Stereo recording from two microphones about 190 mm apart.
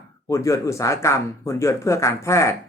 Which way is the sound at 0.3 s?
15° left (ahead or behind).